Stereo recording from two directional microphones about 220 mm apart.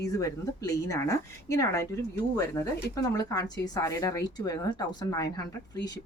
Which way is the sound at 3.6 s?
15° left (ahead or behind).